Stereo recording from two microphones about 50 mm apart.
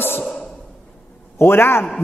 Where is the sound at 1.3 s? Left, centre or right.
Left.